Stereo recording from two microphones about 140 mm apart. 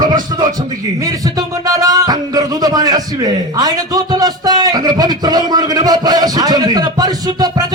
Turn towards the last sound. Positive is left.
turn(degrees=-25)  # may be behind; listen again after turning